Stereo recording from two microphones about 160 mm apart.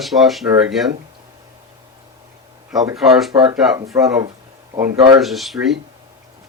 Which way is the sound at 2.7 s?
Centre (ahead or behind).